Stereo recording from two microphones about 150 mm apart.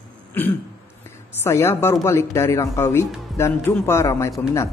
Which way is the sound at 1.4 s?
15° left (ahead or behind).